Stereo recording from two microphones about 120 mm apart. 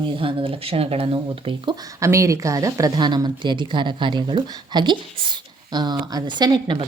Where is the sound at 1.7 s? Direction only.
30° right (ahead or behind).